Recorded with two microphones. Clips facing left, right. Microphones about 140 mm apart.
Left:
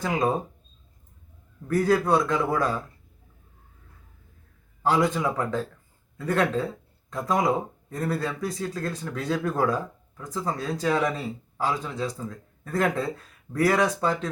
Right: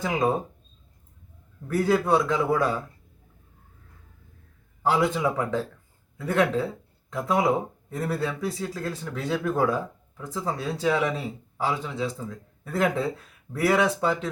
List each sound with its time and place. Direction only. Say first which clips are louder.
0.0 s speech: even; 5° right (ahead or behind)
1.6 s speech: left 1 dB; 5° right (ahead or behind)
4.8 s speech: even; 5° right (ahead or behind)